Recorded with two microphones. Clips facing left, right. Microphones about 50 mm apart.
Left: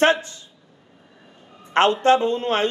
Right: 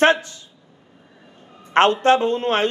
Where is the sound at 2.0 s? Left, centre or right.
Right.